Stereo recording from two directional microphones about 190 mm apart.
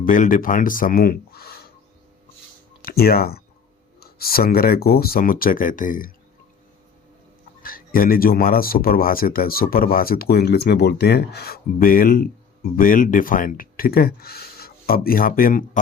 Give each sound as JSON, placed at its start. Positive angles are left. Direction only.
{"t": 0.0, "sound": "speech", "side_deg": 45}
{"t": 2.8, "sound": "speech", "side_deg": 55}
{"t": 7.6, "sound": "speech", "side_deg": 50}